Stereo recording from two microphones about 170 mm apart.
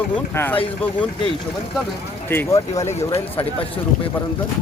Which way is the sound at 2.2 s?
15° left (ahead or behind).